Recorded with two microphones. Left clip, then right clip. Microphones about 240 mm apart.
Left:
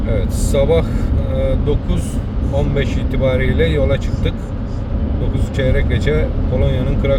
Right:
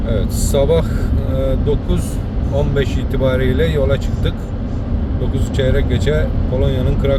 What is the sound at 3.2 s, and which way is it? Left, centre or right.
Speech, centre.